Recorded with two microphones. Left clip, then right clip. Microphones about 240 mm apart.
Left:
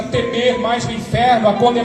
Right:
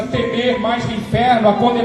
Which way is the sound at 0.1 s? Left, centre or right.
Left.